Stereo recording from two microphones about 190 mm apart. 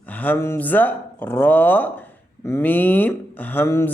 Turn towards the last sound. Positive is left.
turn(degrees=10)  # may be behind; listen again after turning